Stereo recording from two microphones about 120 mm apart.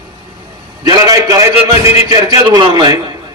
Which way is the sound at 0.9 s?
30° right (ahead or behind).